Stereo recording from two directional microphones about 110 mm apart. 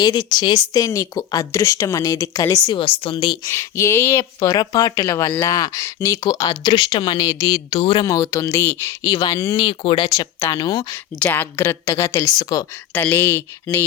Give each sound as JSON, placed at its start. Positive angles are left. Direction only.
{"t": 0.0, "sound": "speech", "side_deg": 35}
{"t": 2.7, "sound": "speech", "side_deg": 55}
{"t": 3.5, "sound": "a woman's voice", "side_deg": 25}
{"t": 4.2, "sound": "speech", "side_deg": 35}
{"t": 7.8, "sound": "speech", "side_deg": 50}
{"t": 8.0, "sound": "a woman's voice", "side_deg": 30}
{"t": 9.1, "sound": "speech", "side_deg": 40}
{"t": 10.1, "sound": "speech", "side_deg": 30}
{"t": 10.9, "sound": "a woman's voice", "side_deg": 20}
{"t": 13.1, "sound": "a woman's voice", "side_deg": 20}